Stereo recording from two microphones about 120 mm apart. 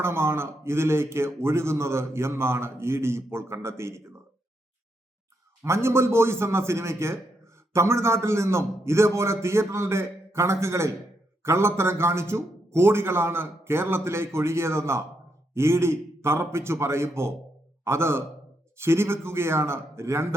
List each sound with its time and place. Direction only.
0.0 s a man's voice: 20° right (ahead or behind)
5.6 s a man's voice: 20° right (ahead or behind)